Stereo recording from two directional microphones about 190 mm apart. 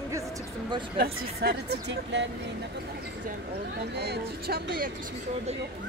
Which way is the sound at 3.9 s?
60° right (ahead or behind).